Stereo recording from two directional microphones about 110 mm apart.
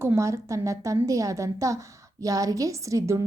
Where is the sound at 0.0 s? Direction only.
25° right (ahead or behind).